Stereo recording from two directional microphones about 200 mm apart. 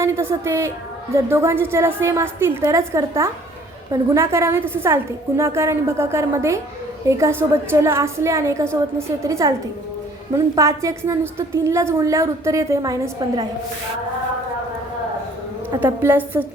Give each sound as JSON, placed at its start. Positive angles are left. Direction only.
{"t": 0.0, "sound": "a woman's voice", "side_deg": -15}
{"t": 15.8, "sound": "a woman's voice", "side_deg": -10}